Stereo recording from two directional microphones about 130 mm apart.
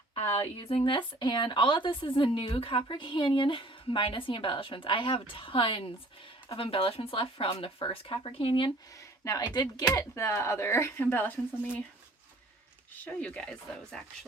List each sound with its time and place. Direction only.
0.2 s speech: 50° left (ahead or behind)
9.2 s speech: 30° left (ahead or behind); by 11.8 s 15° left (ahead or behind)
12.9 s speech: 10° left (ahead or behind)